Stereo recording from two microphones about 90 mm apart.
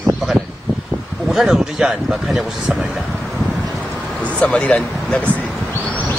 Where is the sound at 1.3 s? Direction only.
5° right (ahead or behind).